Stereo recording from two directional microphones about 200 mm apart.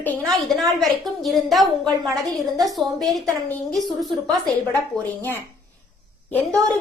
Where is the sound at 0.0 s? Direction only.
5° left (ahead or behind).